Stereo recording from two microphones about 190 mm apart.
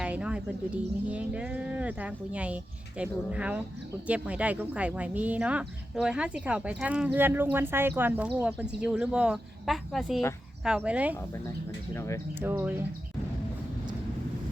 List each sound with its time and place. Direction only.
0.0 s speech: 5° right (ahead or behind)
11.9 s speech: 15° left (ahead or behind)
12.4 s speech: 10° right (ahead or behind)